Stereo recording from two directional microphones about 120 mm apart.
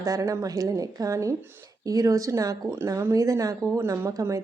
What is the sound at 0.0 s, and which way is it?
A woman's voice, 30° right (ahead or behind).